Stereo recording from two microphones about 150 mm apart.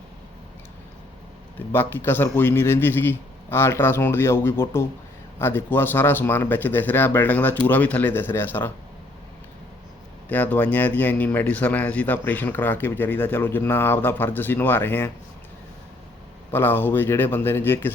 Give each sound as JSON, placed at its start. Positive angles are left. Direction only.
{"t": 1.5, "sound": "speech", "side_deg": 15}
{"t": 10.2, "sound": "speech", "side_deg": 10}
{"t": 16.5, "sound": "speech", "side_deg": 15}